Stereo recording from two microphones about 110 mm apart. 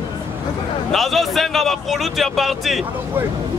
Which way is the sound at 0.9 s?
Centre (ahead or behind).